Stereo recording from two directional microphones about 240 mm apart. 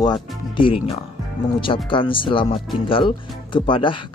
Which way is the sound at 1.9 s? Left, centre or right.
Left.